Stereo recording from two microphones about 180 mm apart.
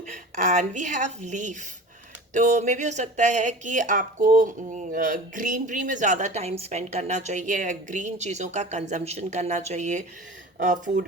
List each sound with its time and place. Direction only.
0.0 s a woman's voice: 45° right (ahead or behind)